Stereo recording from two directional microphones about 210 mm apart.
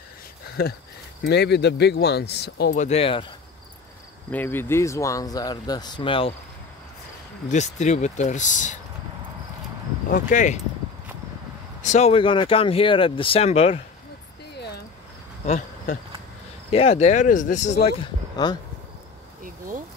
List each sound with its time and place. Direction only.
0.6 s speech: 45° left (ahead or behind)
2.8 s speech: 30° left (ahead or behind)
4.3 s speech: 10° left (ahead or behind); by 6.3 s 25° left (ahead or behind)
7.4 s speech: 35° left (ahead or behind)
10.1 s speech: 35° left (ahead or behind)
11.8 s speech: 35° left (ahead or behind)
14.5 s a sound: 50° left (ahead or behind)
15.4 s insect: 35° left (ahead or behind)
16.7 s speech: 30° left (ahead or behind)
18.4 s speech: 20° left (ahead or behind)